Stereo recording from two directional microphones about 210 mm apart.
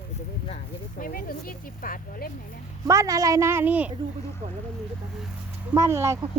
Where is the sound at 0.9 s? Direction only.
40° left (ahead or behind).